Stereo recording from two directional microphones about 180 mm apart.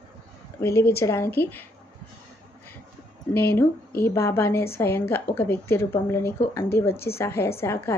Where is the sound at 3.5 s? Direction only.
15° left (ahead or behind).